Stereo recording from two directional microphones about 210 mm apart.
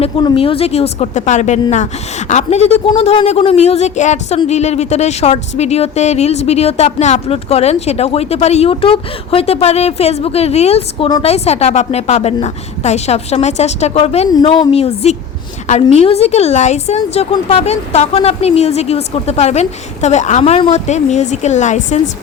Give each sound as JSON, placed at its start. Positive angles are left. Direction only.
{"t": 0.0, "sound": "a woman's voice", "side_deg": 25}